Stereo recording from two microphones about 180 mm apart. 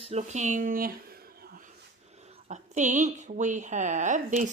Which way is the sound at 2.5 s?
40° right (ahead or behind).